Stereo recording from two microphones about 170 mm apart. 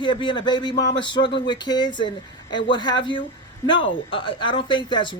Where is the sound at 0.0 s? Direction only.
30° left (ahead or behind).